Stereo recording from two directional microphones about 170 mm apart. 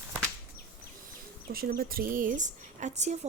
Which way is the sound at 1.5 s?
60° right (ahead or behind).